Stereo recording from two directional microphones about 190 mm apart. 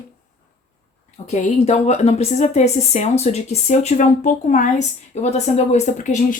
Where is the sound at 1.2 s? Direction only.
35° left (ahead or behind).